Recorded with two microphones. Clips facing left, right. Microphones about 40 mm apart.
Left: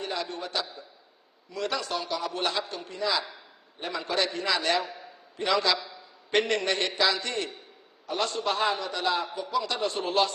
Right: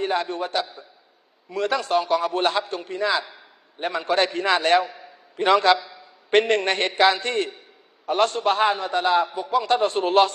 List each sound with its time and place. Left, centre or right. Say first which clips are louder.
0.0 s a man's voice: right 8 dB; right